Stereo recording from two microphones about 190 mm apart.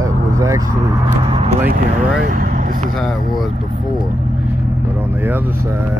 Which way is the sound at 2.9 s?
Centre (ahead or behind).